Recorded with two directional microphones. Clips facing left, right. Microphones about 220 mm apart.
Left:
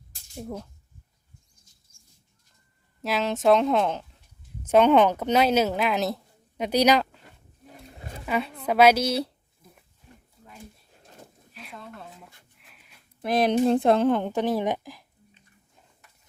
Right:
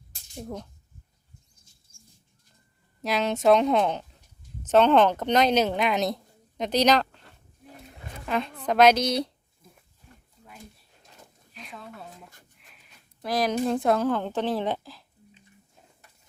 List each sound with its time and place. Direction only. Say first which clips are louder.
0.3 s speech: left 1 dB; 5° left (ahead or behind)
1.9 s bird: right 10 dB; 30° right (ahead or behind)
3.0 s speech: even; centre (ahead or behind)
11.5 s a sound: even; centre (ahead or behind)
12.5 s wheeze: left 1 dB; centre (ahead or behind)
13.2 s a woman's voice: left 4 dB; 25° left (ahead or behind)